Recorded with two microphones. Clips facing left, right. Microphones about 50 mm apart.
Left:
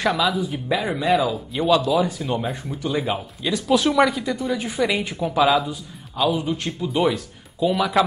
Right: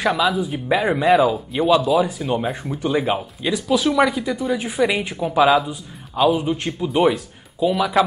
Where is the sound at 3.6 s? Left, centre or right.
Centre.